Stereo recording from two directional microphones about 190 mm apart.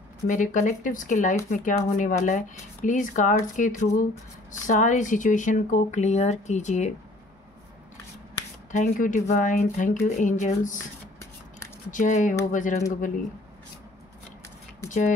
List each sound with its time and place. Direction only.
0.3 s speech: 40° left (ahead or behind)
8.7 s speech: 45° left (ahead or behind)
11.9 s speech: 40° left (ahead or behind)
14.9 s speech: 40° left (ahead or behind)